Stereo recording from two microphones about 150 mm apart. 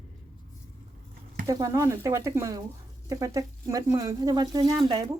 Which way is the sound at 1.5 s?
20° right (ahead or behind).